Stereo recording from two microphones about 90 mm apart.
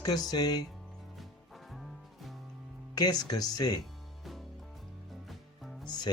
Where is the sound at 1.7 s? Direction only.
Centre (ahead or behind).